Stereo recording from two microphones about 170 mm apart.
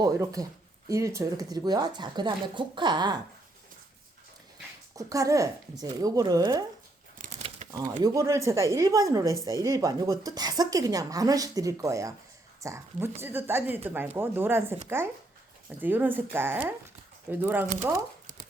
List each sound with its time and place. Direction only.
0.0 s a woman's voice: 20° right (ahead or behind)
4.9 s a woman's voice: 20° right (ahead or behind)
7.2 s a sound: 45° right (ahead or behind)
8.0 s a woman's voice: 20° right (ahead or behind)